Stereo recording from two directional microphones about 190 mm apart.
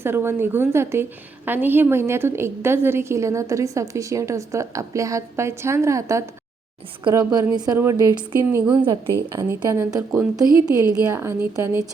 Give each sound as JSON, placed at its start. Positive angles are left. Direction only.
{"t": 0.0, "sound": "a woman's voice", "side_deg": -10}